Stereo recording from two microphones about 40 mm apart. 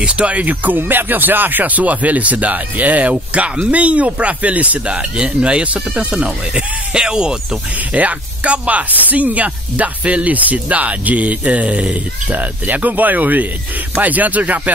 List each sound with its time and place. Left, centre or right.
0.0 s speech: right
0.7 s speech: right
4.9 s speech: right
7.9 s speech: right